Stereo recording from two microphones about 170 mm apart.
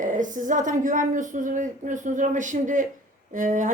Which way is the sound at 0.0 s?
50° right (ahead or behind).